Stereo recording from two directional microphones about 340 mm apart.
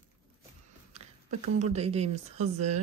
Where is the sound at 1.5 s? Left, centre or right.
Centre.